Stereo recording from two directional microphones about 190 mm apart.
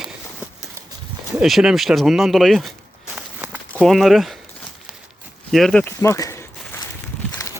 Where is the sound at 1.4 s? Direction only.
5° right (ahead or behind).